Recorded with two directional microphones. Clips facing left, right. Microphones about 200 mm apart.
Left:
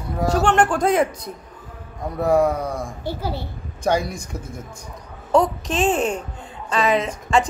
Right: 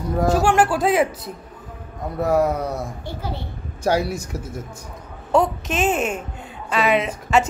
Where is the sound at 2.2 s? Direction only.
5° right (ahead or behind).